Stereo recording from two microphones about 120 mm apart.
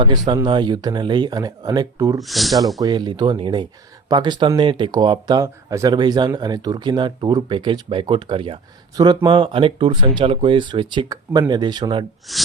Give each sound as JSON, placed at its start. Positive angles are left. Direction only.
{"t": 0.4, "sound": "speech", "side_deg": -40}
{"t": 2.2, "sound": "speech", "side_deg": 0}
{"t": 2.8, "sound": "speech", "side_deg": -35}
{"t": 5.4, "sound": "speech", "side_deg": -30}
{"t": 12.3, "sound": "speech", "side_deg": 0}